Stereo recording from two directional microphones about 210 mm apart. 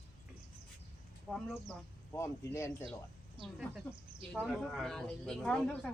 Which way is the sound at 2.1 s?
15° left (ahead or behind).